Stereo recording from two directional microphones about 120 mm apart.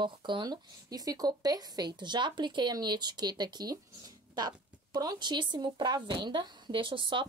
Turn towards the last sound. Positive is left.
turn(degrees=-45)  # may be behind; listen again after turning